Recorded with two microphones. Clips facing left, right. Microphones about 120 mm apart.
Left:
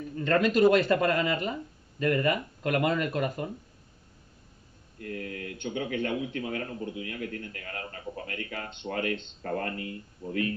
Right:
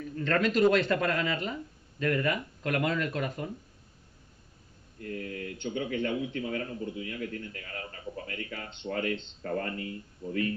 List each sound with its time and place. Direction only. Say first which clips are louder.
0.2 s speech: left 2 dB; 5° left (ahead or behind)
5.0 s a man's voice: even; 50° left (ahead or behind)